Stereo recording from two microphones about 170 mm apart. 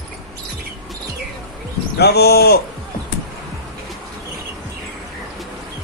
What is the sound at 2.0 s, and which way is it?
Speech, 70° left (ahead or behind).